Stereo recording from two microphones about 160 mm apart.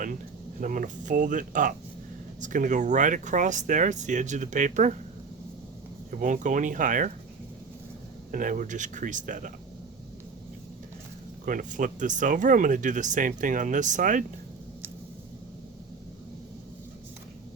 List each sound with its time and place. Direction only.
0.6 s speech: 55° right (ahead or behind)
6.1 s speech: 55° right (ahead or behind)
8.3 s speech: 55° right (ahead or behind)
11.4 s speech: 55° right (ahead or behind)